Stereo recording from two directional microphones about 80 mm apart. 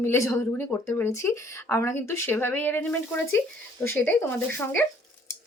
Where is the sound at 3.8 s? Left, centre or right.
Left.